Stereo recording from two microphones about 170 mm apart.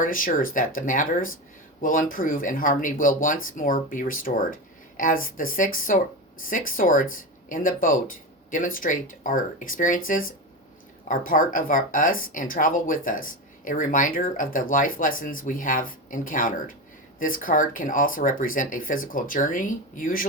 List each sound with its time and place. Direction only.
0.0 s speech: 55° left (ahead or behind)